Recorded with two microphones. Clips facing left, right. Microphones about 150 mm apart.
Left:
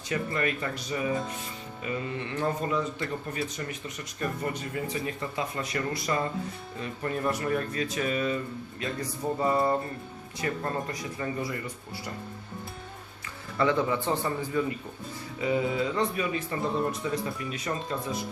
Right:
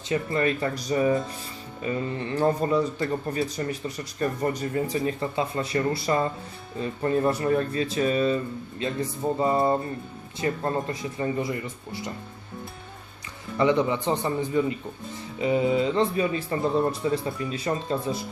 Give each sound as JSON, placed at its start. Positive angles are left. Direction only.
{"t": 0.1, "sound": "speech", "side_deg": -30}
{"t": 13.6, "sound": "speech", "side_deg": -20}